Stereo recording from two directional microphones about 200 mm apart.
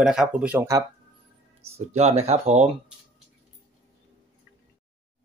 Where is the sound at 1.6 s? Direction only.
30° right (ahead or behind).